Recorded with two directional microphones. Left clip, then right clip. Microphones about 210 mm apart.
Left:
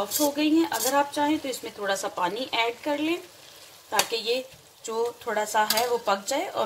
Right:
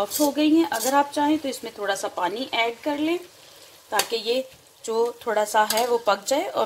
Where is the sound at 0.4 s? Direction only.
35° right (ahead or behind).